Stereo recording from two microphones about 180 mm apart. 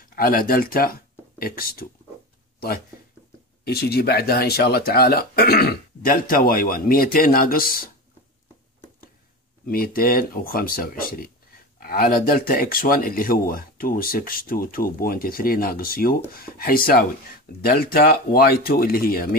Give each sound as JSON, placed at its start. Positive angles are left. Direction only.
{"t": 0.1, "sound": "speech", "side_deg": 55}
{"t": 3.6, "sound": "speech", "side_deg": 60}
{"t": 9.7, "sound": "speech", "side_deg": 55}